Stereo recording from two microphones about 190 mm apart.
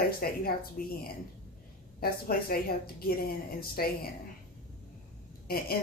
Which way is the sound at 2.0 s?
50° left (ahead or behind).